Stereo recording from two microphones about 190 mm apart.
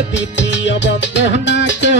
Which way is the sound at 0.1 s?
70° left (ahead or behind).